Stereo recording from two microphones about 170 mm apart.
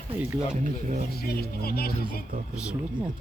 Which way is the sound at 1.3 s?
65° left (ahead or behind).